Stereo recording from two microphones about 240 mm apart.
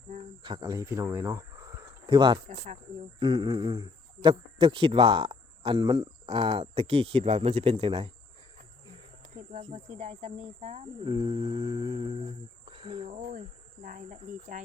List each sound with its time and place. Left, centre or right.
0.4 s speech: centre
9.5 s speech: right